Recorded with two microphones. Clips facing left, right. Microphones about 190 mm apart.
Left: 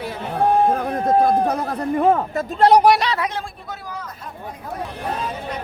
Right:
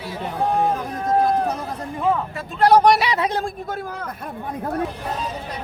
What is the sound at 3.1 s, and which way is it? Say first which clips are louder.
Speech: right 3 dB; 30° right (ahead or behind).